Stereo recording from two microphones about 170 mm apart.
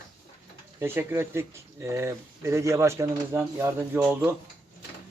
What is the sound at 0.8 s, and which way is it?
Speech, 15° right (ahead or behind).